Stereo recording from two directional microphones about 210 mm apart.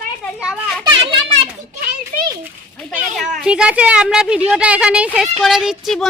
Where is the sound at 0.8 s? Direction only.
20° right (ahead or behind).